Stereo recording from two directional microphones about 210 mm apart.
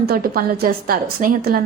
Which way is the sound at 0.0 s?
45° right (ahead or behind).